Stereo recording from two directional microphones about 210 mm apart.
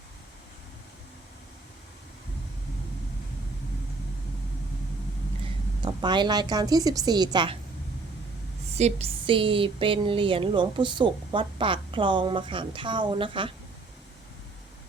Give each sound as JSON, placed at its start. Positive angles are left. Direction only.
{"t": 5.8, "sound": "speech", "side_deg": -20}
{"t": 8.7, "sound": "speech", "side_deg": -30}